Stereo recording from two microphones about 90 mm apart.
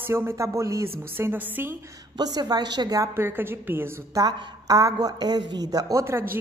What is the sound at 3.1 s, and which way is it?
Speech, 25° right (ahead or behind).